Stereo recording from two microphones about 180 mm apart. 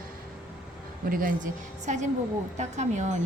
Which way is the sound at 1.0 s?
50° right (ahead or behind).